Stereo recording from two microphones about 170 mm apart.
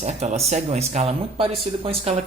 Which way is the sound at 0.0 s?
40° right (ahead or behind).